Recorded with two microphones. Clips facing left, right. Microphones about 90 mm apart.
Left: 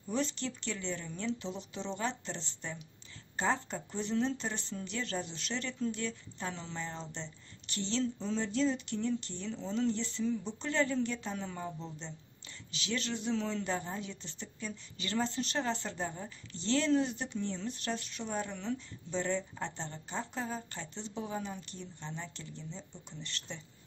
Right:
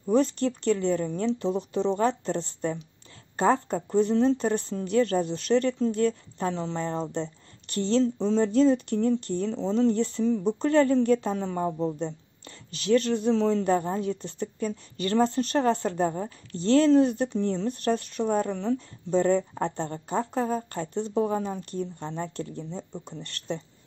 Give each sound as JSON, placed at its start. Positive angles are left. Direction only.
{"t": 0.0, "sound": "speech", "side_deg": -45}